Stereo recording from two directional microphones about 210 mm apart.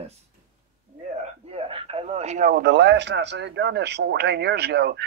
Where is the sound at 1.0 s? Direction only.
30° right (ahead or behind).